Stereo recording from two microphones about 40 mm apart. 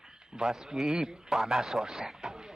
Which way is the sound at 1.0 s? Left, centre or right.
Centre.